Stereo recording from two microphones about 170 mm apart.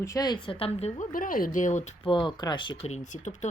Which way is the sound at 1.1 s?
55° left (ahead or behind).